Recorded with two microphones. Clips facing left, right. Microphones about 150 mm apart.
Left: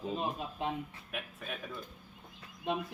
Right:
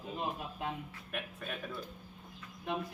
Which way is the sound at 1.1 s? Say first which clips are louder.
Right 1 dB; centre (ahead or behind).